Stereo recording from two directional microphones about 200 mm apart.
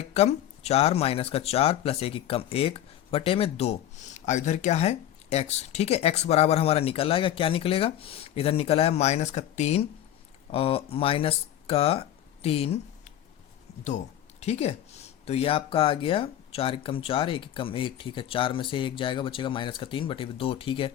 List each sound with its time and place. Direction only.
0.0 s speech: 30° left (ahead or behind)
14.4 s speech: 30° left (ahead or behind)